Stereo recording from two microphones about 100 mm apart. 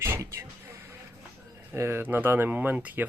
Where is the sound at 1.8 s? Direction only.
25° right (ahead or behind).